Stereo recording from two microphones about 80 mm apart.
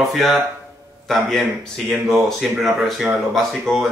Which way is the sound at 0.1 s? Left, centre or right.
Centre.